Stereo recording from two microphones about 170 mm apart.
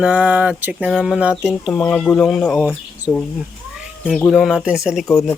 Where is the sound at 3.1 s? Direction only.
15° left (ahead or behind).